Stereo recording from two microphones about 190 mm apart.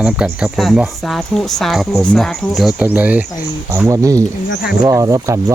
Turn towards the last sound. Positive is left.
turn(degrees=-15)  # may be behind; listen again after turning